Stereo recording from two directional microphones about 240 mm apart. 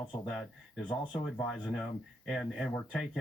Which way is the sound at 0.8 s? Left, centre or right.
Centre.